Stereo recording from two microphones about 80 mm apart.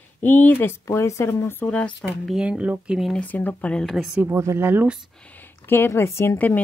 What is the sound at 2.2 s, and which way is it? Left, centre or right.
Speech, centre.